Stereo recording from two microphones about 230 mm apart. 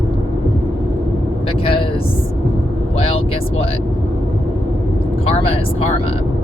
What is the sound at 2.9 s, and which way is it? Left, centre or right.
Vehicle, left.